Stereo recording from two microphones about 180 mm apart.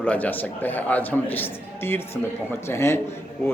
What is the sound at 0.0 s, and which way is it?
A man's voice, 10° left (ahead or behind).